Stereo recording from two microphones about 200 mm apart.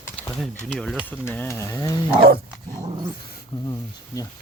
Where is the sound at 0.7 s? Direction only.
5° left (ahead or behind).